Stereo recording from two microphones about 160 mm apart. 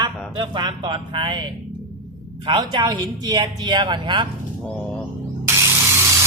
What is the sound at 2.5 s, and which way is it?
A man's voice, 30° right (ahead or behind).